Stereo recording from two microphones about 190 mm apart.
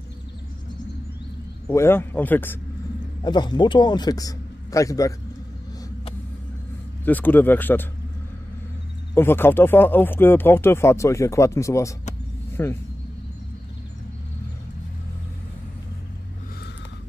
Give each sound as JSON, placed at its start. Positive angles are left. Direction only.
{"t": 1.7, "sound": "speech", "side_deg": 15}
{"t": 3.2, "sound": "a man's voice", "side_deg": 25}
{"t": 7.1, "sound": "speech", "side_deg": 10}
{"t": 9.1, "sound": "speech", "side_deg": 10}